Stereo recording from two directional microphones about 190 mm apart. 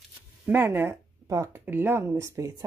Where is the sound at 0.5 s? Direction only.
10° right (ahead or behind).